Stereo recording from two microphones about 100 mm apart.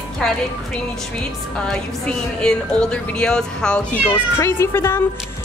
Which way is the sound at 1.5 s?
10° left (ahead or behind).